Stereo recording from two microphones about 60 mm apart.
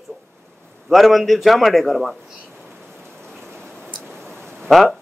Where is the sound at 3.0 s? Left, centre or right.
Centre.